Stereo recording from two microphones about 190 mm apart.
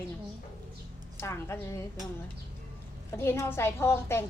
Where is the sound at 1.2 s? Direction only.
15° left (ahead or behind).